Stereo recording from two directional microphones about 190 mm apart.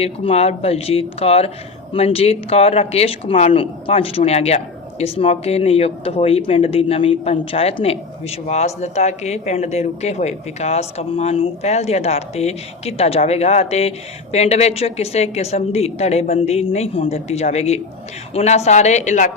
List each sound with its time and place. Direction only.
0.0 s speech: 30° left (ahead or behind)